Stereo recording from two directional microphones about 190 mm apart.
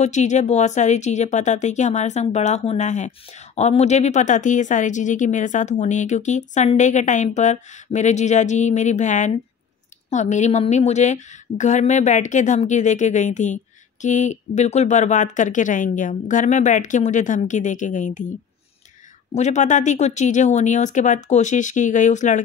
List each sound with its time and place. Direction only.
0.0 s speech: 40° left (ahead or behind)
19.3 s speech: 40° left (ahead or behind)